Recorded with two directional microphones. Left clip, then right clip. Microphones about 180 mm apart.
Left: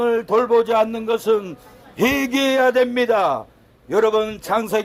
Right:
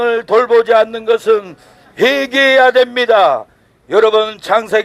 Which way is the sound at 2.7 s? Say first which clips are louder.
Right 6 dB; 45° right (ahead or behind).